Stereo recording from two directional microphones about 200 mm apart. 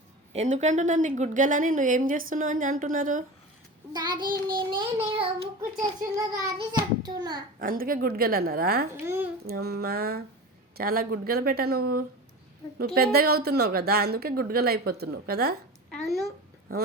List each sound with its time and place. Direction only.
0.3 s a woman's voice: 35° right (ahead or behind)
5.1 s a child's voice: 25° right (ahead or behind)
7.6 s a woman's voice: 45° right (ahead or behind)
9.0 s a child's voice: 10° right (ahead or behind)
9.5 s a woman's voice: 50° right (ahead or behind)
15.9 s a sound: centre (ahead or behind)